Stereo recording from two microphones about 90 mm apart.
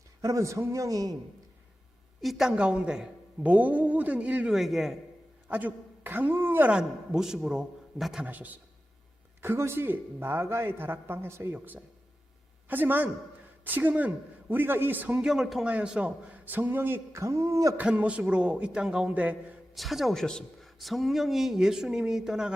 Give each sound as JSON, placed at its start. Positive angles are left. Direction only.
{"t": 0.2, "sound": "a man's voice", "side_deg": -35}
{"t": 2.2, "sound": "a woman's voice", "side_deg": -5}
{"t": 4.5, "sound": "speech", "side_deg": -5}
{"t": 5.5, "sound": "a man's voice", "side_deg": -20}
{"t": 6.7, "sound": "a woman's voice", "side_deg": -10}
{"t": 8.2, "sound": "a woman's voice", "side_deg": -20}
{"t": 17.7, "sound": "a woman's voice", "side_deg": -15}
{"t": 19.7, "sound": "speech", "side_deg": 0}